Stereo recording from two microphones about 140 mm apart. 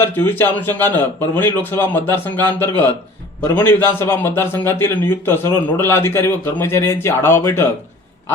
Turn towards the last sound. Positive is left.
turn(degrees=20)  # may be behind; listen again after turning